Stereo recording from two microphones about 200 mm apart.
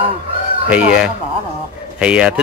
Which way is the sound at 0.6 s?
5° right (ahead or behind).